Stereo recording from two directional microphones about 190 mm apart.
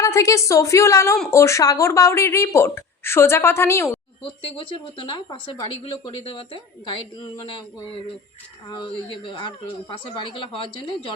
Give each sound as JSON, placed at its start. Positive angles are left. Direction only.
{"t": 0.0, "sound": "speech", "side_deg": 15}
{"t": 4.9, "sound": "speech", "side_deg": 25}
{"t": 8.7, "sound": "speech", "side_deg": 25}